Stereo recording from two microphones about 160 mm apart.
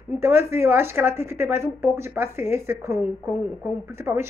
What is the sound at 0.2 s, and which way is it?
A woman's voice, 15° right (ahead or behind).